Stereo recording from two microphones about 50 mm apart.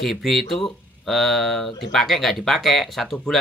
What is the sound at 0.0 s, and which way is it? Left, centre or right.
Speech, centre.